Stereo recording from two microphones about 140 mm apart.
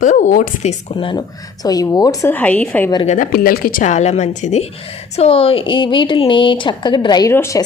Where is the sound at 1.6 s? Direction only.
25° left (ahead or behind).